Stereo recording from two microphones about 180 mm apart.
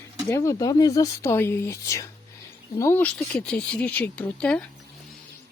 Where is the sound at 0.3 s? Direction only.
15° left (ahead or behind).